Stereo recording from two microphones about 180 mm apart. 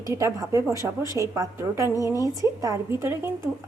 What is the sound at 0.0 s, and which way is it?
A woman's voice, 15° right (ahead or behind).